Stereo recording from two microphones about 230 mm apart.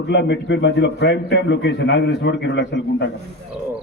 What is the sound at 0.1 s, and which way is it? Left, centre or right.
Speech, left.